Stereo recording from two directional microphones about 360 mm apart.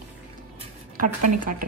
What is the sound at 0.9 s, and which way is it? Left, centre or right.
Speech, right.